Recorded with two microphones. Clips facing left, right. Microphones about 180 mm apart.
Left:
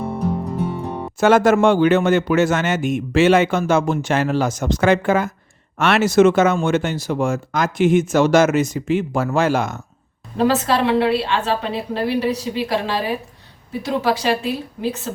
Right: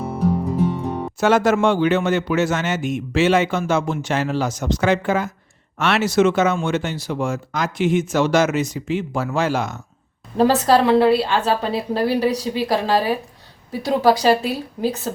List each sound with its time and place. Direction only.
0.0 s music: centre (ahead or behind)
1.2 s a man's voice: 50° left (ahead or behind)
10.3 s a woman's voice: 35° right (ahead or behind)